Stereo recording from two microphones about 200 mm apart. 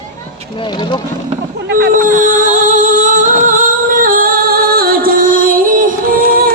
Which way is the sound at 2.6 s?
40° right (ahead or behind).